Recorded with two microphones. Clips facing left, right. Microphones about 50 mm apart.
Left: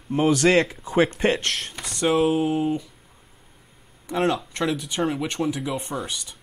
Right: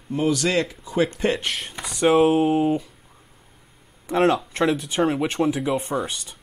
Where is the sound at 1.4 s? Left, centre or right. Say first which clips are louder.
Even; centre.